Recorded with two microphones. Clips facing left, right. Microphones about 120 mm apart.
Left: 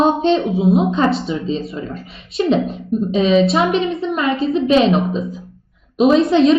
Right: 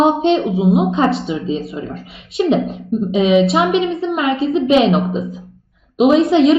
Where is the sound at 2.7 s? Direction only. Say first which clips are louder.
Right 1 dB; 15° right (ahead or behind).